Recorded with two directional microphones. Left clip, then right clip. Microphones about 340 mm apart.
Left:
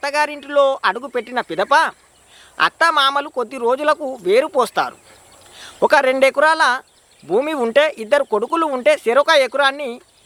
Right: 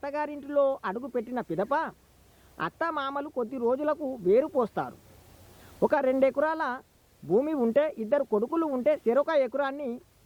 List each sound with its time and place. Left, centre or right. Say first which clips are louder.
0.0 s speech: left 13 dB; centre
8.3 s speech: left 8 dB; centre
8.5 s speech: left 13 dB; centre